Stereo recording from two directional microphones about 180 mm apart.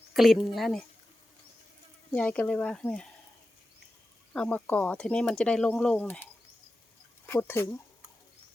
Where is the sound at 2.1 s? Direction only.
5° left (ahead or behind).